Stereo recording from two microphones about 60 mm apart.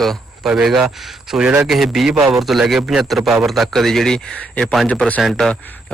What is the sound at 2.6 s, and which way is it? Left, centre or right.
Speech, centre.